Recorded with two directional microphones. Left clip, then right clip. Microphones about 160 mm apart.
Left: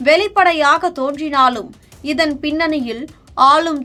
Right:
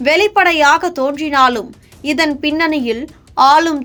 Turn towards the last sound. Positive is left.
turn(degrees=-20)  # may be behind; listen again after turning